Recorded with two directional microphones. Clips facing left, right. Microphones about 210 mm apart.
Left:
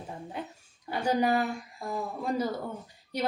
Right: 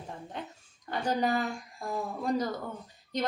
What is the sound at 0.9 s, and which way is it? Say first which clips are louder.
A woman's voice: left 3 dB; 10° left (ahead or behind).